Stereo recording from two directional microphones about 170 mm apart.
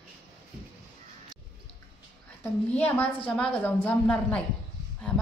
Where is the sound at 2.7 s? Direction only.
10° left (ahead or behind).